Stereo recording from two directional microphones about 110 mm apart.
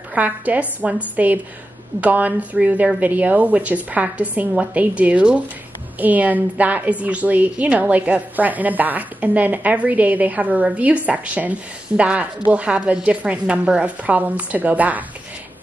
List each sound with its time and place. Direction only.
0.1 s a woman's voice: 15° right (ahead or behind)